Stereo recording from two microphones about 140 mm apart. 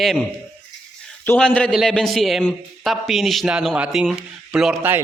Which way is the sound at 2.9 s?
Centre (ahead or behind).